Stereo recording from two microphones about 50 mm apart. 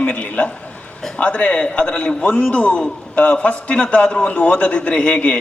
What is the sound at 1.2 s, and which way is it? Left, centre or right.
A man's voice, left.